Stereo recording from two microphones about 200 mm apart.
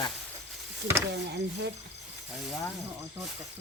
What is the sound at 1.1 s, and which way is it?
Speech, 55° right (ahead or behind).